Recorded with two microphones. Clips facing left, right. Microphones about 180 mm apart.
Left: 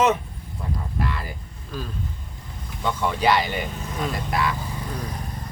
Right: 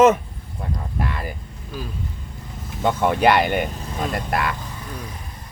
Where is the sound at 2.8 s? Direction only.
50° right (ahead or behind).